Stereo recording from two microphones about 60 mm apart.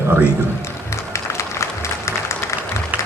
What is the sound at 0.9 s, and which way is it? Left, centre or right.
Applause, left.